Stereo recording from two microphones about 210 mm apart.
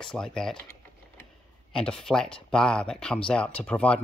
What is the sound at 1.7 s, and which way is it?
Speech, 5° left (ahead or behind).